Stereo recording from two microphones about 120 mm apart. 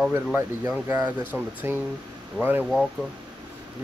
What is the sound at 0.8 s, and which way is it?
Speech, 25° right (ahead or behind).